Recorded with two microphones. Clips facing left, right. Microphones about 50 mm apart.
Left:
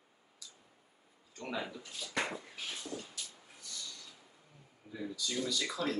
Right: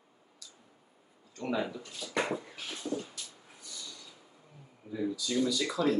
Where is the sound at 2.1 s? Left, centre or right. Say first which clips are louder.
Right 5 dB; centre.